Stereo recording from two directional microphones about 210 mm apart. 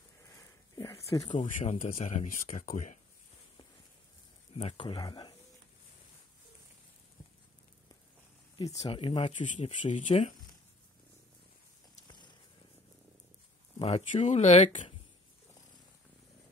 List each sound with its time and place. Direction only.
0.7 s a sound: 15° left (ahead or behind)
1.3 s speech: 35° left (ahead or behind)
4.6 s speech: 25° left (ahead or behind)
8.5 s speech: 20° left (ahead or behind)
12.1 s purr: 20° left (ahead or behind)
13.7 s speech: 25° left (ahead or behind)